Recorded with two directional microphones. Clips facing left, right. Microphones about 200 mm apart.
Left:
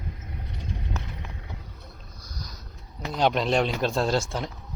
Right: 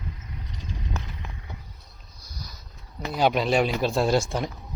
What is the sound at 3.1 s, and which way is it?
Speech, 5° right (ahead or behind).